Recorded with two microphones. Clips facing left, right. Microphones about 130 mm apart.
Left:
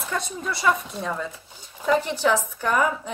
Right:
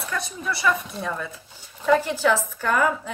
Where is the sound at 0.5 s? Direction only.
20° left (ahead or behind).